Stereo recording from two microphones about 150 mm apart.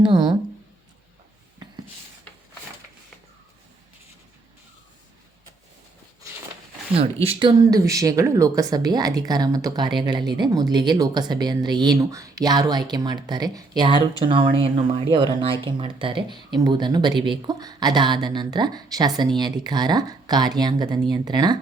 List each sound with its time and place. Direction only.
0.0 s speech: 30° right (ahead or behind)
6.9 s speech: 40° right (ahead or behind)
7.7 s speech: 20° right (ahead or behind)